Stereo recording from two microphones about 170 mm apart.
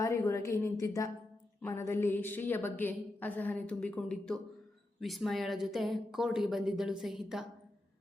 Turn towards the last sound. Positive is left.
turn(degrees=0)  # may be behind; listen again after turning